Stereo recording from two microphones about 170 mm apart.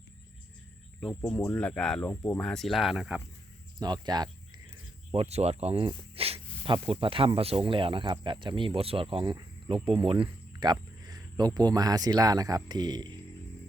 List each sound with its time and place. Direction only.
1.5 s speech: 5° left (ahead or behind)
3.8 s speech: 25° right (ahead or behind)
5.1 s speech: 40° right (ahead or behind)